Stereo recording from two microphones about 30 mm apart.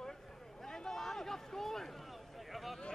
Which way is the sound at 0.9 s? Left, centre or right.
Centre.